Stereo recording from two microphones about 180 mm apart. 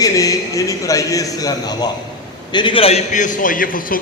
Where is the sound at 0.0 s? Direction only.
20° left (ahead or behind).